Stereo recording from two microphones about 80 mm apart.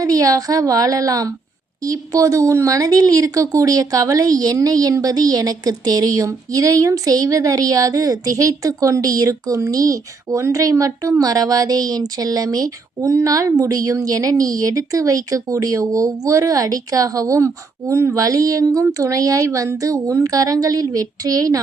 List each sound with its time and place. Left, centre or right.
0.0 s a woman's voice: right